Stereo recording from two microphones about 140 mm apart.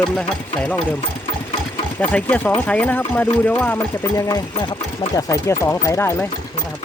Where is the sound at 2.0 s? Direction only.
10° left (ahead or behind).